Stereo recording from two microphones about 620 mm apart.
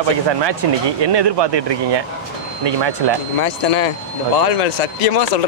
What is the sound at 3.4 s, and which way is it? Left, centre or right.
Speech, left.